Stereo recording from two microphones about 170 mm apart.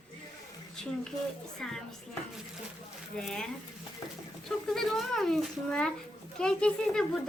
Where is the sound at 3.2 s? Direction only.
5° left (ahead or behind).